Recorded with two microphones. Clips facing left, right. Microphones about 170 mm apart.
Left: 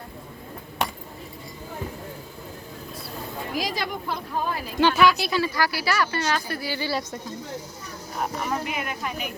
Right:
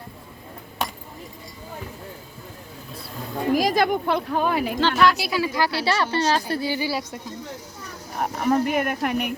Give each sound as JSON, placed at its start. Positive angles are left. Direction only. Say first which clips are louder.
{"t": 3.5, "sound": "speech", "louder": "right 10 dB", "side_deg": -50}
{"t": 4.8, "sound": "speech", "louder": "left 2 dB", "side_deg": 10}
{"t": 5.1, "sound": "speech", "louder": "even", "side_deg": -10}
{"t": 5.5, "sound": "speech", "louder": "right 3 dB", "side_deg": -20}
{"t": 6.7, "sound": "speech", "louder": "right 2 dB", "side_deg": -10}
{"t": 8.2, "sound": "speech", "louder": "right 7 dB", "side_deg": -50}